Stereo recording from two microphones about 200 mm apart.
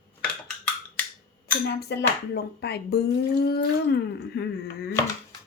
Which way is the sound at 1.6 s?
55° left (ahead or behind).